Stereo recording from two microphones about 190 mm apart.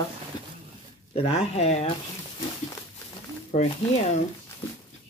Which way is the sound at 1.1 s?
30° left (ahead or behind).